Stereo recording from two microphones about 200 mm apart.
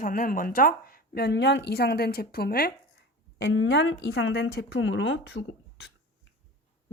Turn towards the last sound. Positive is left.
turn(degrees=55)  # may be behind; listen again after turning